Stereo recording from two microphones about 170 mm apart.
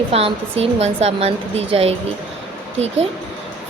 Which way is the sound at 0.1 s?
35° right (ahead or behind).